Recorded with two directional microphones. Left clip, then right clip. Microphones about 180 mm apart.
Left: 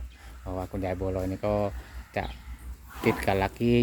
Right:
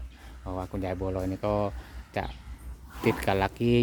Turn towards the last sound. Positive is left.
turn(degrees=-5)  # may be behind; listen again after turning